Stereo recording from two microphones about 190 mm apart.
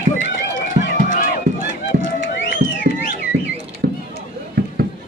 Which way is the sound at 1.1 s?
45° left (ahead or behind).